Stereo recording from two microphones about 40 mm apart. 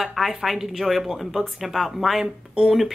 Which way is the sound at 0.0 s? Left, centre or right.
Centre.